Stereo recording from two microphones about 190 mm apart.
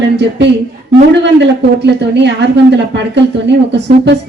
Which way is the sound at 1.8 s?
65° right (ahead or behind).